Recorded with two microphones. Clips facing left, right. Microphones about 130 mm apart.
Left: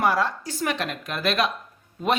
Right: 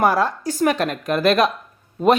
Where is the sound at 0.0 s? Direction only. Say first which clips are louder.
Right 5 dB; 45° right (ahead or behind).